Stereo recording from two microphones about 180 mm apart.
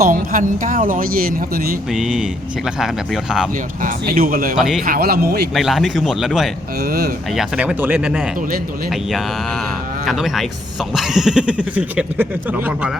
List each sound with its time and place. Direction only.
0.0 s speech: 45° right (ahead or behind)
1.9 s speech: 5° right (ahead or behind)
3.8 s speech: 55° right (ahead or behind)
4.5 s speech: centre (ahead or behind)
4.9 s speech: 55° right (ahead or behind)
5.5 s speech: centre (ahead or behind)
6.8 s speech: 60° right (ahead or behind)
7.3 s speech: 5° right (ahead or behind)
10.1 s speech: centre (ahead or behind)